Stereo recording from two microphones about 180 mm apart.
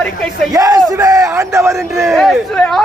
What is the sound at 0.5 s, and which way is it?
Crowd, 20° right (ahead or behind).